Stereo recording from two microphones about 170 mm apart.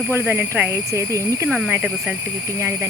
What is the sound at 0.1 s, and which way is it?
Speech, 15° right (ahead or behind).